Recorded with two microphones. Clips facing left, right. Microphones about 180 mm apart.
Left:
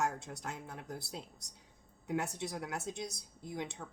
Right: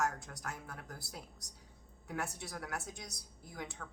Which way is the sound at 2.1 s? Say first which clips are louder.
Left 5 dB; 20° left (ahead or behind).